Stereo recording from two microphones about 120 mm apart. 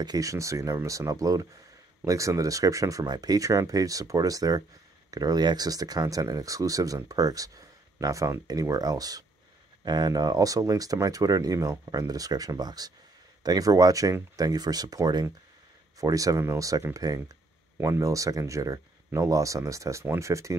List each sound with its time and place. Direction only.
0.0 s speech: 30° right (ahead or behind)